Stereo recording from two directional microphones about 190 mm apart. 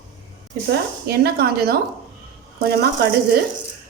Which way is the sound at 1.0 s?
60° right (ahead or behind).